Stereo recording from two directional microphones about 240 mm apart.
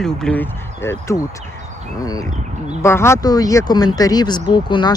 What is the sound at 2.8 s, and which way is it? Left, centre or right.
Speech, centre.